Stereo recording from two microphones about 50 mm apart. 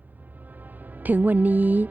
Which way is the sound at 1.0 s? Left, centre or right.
Right.